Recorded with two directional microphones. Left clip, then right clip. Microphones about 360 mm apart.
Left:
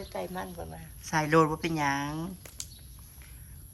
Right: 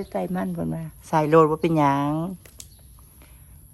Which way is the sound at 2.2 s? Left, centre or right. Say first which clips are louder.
Right 7 dB; centre.